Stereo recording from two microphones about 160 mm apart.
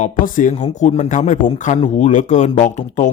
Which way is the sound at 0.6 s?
40° left (ahead or behind).